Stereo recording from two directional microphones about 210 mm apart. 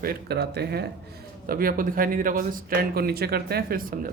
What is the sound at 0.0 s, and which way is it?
Speech, 50° right (ahead or behind).